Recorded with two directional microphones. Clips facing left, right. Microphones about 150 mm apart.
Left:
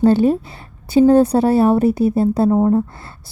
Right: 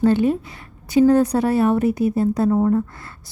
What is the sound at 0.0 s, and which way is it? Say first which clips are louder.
A woman's voice: left 4 dB; 35° left (ahead or behind).